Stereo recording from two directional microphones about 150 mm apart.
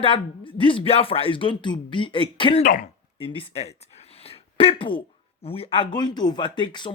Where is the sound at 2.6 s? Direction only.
60° left (ahead or behind).